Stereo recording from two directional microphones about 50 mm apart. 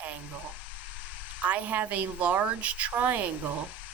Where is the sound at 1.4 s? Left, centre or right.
Right.